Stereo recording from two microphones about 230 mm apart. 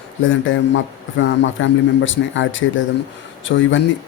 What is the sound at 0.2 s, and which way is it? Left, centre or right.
Speech, left.